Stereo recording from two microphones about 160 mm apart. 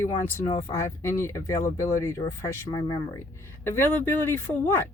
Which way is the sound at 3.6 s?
15° left (ahead or behind).